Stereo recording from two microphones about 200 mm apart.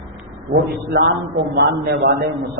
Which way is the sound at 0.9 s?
60° right (ahead or behind).